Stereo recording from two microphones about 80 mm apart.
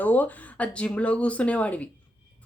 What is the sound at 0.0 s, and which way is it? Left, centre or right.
A woman's voice, left.